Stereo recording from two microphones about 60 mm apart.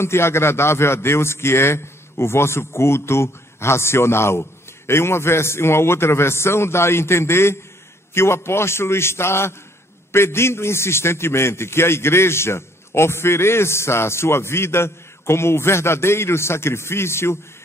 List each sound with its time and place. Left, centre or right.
0.0 s a man's voice: left